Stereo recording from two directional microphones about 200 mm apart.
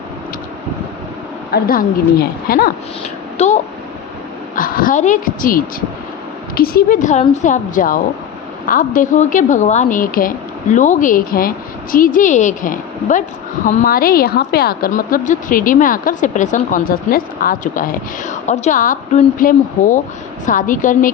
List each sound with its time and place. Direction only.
1.5 s a woman's voice: 50° left (ahead or behind)
3.3 s a child's voice: 35° left (ahead or behind)